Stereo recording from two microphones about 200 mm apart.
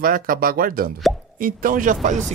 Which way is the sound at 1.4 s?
45° right (ahead or behind).